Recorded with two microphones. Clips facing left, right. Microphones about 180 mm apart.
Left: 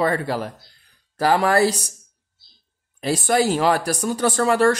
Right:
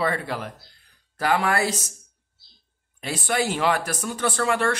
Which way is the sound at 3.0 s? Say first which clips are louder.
Left 6 dB; 40° left (ahead or behind).